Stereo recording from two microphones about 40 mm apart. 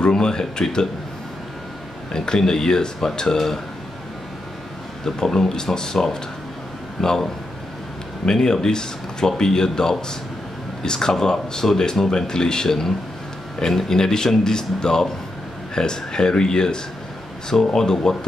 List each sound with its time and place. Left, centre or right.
0.0 s speech: centre
2.1 s speech: centre
5.0 s speech: centre
8.3 s speech: centre